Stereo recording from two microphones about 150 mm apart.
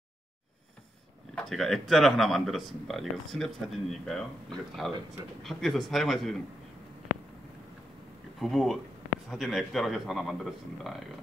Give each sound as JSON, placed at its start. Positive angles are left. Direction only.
{"t": 1.3, "sound": "speech", "side_deg": 5}
{"t": 8.4, "sound": "speech", "side_deg": 0}